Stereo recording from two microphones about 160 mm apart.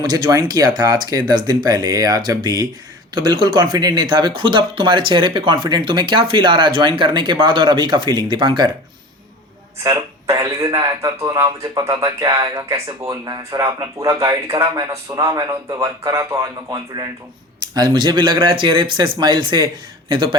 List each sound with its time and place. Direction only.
0.1 s speech: 25° right (ahead or behind)
9.8 s speech: 20° right (ahead or behind)